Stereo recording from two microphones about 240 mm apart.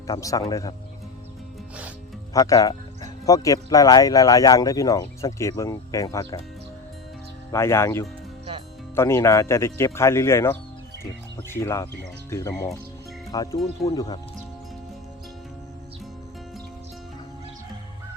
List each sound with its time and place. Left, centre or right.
0.1 s speech: centre
2.3 s speech: centre
7.5 s speech: centre